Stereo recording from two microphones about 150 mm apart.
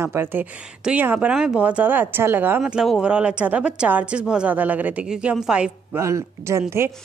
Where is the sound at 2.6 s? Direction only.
5° right (ahead or behind).